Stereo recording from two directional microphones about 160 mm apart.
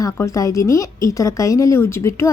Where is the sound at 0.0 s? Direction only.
20° left (ahead or behind).